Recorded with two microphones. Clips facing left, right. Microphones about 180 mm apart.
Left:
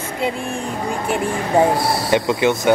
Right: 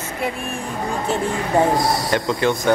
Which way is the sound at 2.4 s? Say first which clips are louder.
Left 2 dB; 15° left (ahead or behind).